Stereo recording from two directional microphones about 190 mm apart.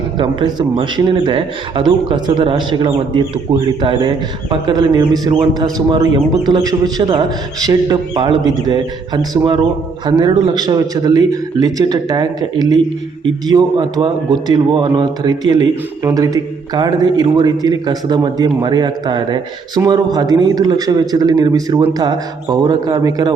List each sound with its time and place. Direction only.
0.2 s speech: 25° right (ahead or behind)